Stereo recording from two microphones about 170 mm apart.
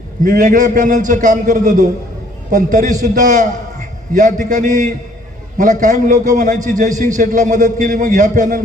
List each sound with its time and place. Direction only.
0.3 s a man's voice: 50° right (ahead or behind)